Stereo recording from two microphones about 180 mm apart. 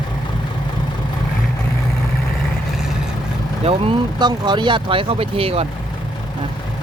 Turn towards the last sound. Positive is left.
turn(degrees=-30)  # may be behind; listen again after turning